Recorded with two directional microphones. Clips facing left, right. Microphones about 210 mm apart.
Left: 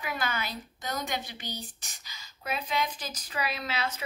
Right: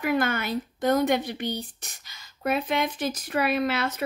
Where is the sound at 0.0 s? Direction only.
55° right (ahead or behind).